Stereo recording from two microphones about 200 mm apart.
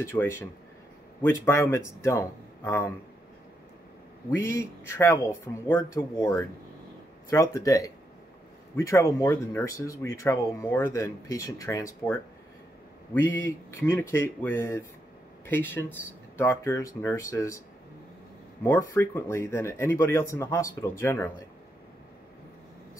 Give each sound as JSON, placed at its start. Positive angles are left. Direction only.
{"t": 0.0, "sound": "speech", "side_deg": 15}
{"t": 4.3, "sound": "speech", "side_deg": 15}
{"t": 18.6, "sound": "speech", "side_deg": 10}